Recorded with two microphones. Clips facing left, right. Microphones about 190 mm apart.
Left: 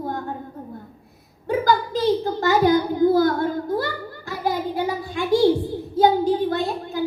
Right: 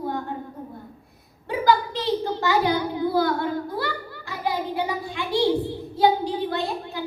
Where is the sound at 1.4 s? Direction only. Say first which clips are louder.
Left 1 dB; 45° left (ahead or behind).